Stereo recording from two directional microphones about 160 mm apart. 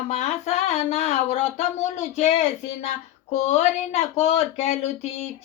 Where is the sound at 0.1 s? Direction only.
45° left (ahead or behind).